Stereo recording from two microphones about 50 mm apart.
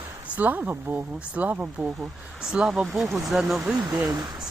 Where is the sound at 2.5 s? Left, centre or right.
Centre.